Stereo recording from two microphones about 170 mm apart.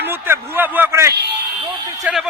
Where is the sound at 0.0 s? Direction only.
10° right (ahead or behind).